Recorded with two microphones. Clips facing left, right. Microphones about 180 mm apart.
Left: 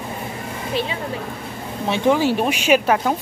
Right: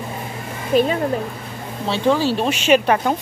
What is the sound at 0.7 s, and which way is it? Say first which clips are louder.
Speech: right 8 dB; 45° right (ahead or behind).